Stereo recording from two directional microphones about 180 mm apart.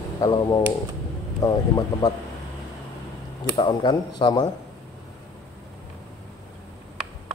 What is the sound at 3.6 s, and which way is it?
Speech, 25° left (ahead or behind).